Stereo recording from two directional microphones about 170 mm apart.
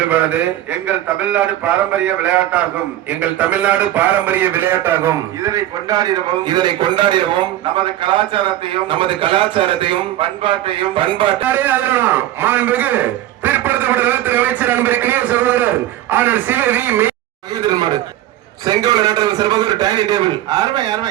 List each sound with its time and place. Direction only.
0.1 s a man's voice: 10° right (ahead or behind); by 11.4 s 30° right (ahead or behind)
11.4 s a man's voice: 10° right (ahead or behind)
17.7 s a man's voice: 25° right (ahead or behind)